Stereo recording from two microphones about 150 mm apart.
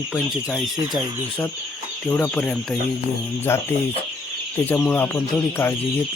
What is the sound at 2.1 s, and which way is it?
Speech, 10° left (ahead or behind).